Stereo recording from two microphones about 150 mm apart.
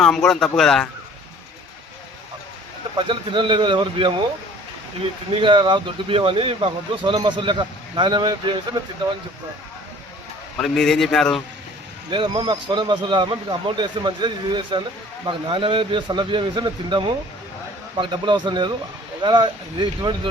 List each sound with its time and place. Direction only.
0.0 s speech: 5° left (ahead or behind)
3.0 s speech: 35° right (ahead or behind)
5.3 s speech: 35° right (ahead or behind)
10.6 s speech: centre (ahead or behind)
12.1 s speech: 35° right (ahead or behind)